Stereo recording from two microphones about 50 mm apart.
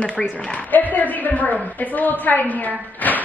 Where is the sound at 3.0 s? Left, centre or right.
Left.